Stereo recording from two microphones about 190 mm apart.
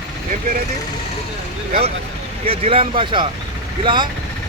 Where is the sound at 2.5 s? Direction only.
30° right (ahead or behind).